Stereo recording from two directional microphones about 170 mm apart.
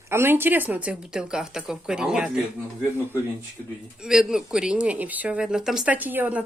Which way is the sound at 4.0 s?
5° right (ahead or behind).